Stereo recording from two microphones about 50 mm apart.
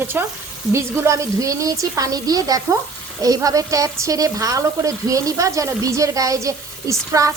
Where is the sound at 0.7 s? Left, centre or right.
Right.